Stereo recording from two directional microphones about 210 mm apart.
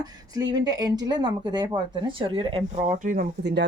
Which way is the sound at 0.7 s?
20° right (ahead or behind).